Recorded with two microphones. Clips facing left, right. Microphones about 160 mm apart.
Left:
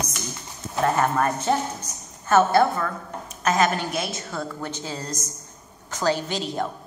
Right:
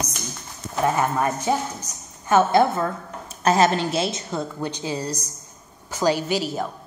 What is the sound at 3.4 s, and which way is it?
A woman's voice, 30° right (ahead or behind).